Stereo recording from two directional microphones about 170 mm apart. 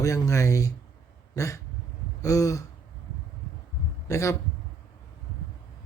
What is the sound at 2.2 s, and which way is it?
Speech, 20° left (ahead or behind).